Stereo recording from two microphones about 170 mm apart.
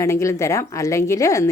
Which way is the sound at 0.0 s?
15° left (ahead or behind).